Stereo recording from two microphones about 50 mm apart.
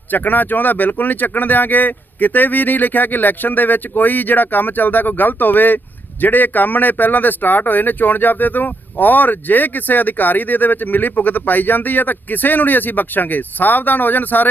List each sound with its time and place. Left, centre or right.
0.1 s speech: left